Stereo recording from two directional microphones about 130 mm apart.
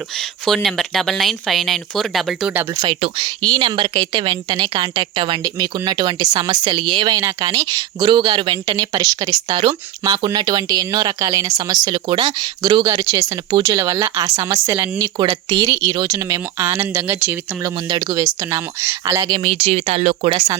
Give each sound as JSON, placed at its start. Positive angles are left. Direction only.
{"t": 0.2, "sound": "speech", "side_deg": 0}
{"t": 2.9, "sound": "speech", "side_deg": -45}
{"t": 3.4, "sound": "speech", "side_deg": -35}
{"t": 9.5, "sound": "speech", "side_deg": -45}
{"t": 10.3, "sound": "speech", "side_deg": -30}
{"t": 17.8, "sound": "speech", "side_deg": -30}
{"t": 19.3, "sound": "speech", "side_deg": -45}